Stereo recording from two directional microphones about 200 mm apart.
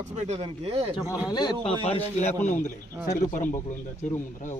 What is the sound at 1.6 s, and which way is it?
A man's voice, 30° left (ahead or behind).